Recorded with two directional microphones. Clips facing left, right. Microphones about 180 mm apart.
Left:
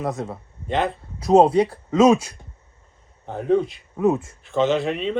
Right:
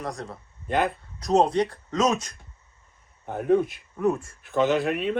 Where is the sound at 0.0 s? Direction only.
25° left (ahead or behind).